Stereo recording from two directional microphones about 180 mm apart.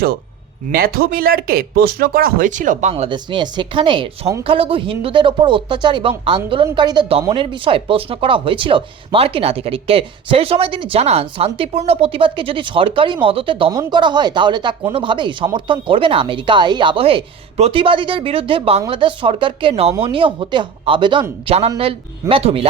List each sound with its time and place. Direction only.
0.7 s speech: 55° right (ahead or behind)
2.9 s speech: 25° right (ahead or behind)